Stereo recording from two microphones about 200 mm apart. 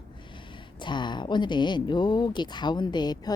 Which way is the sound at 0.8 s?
25° left (ahead or behind).